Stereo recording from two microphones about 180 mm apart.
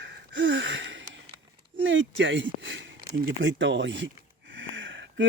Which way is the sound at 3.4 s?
90° right.